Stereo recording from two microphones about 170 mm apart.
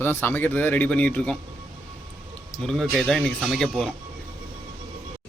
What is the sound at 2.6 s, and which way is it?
Speech, centre (ahead or behind).